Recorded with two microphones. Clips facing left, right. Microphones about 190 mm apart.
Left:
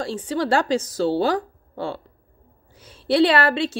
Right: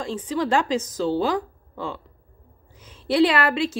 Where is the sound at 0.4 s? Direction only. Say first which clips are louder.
Left 2 dB; 35° left (ahead or behind).